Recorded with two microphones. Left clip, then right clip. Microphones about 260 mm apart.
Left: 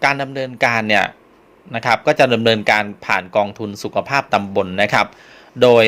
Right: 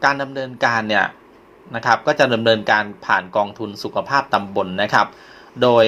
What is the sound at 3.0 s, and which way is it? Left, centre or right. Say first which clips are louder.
Speech: left 1 dB; left.